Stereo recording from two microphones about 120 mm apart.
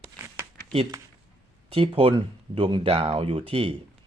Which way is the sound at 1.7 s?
55° right (ahead or behind).